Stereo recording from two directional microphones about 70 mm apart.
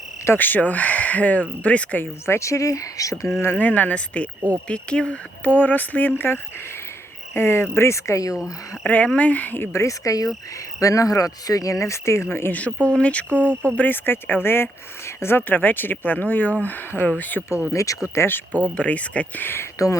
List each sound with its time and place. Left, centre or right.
0.3 s speech: left
2.2 s speech: left
3.3 s speech: left
3.6 s speech: left
5.5 s speech: left
8.8 s speech: left
9.7 s speech: left
12.5 s speech: centre
17.7 s speech: left
18.8 s speech: centre
19.8 s speech: left